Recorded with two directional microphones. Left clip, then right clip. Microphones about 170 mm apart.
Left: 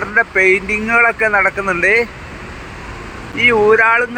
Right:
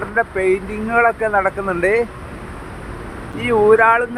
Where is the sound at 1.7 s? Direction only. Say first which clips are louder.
Left 3 dB; 5° right (ahead or behind).